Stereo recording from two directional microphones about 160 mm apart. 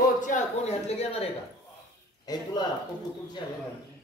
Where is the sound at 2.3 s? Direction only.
25° left (ahead or behind).